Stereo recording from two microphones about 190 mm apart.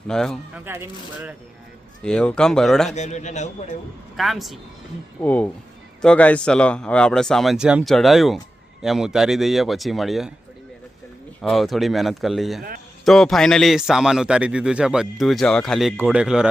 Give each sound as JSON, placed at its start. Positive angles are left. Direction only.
{"t": 0.1, "sound": "a man's voice", "side_deg": 5}
{"t": 0.6, "sound": "speech", "side_deg": -10}
{"t": 2.0, "sound": "a man's voice", "side_deg": 5}
{"t": 2.9, "sound": "a man's voice", "side_deg": 40}
{"t": 4.2, "sound": "a man's voice", "side_deg": 0}
{"t": 11.4, "sound": "a man's voice", "side_deg": 0}